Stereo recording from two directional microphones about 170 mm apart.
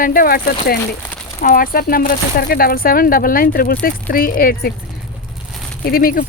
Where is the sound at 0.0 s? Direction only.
55° left (ahead or behind).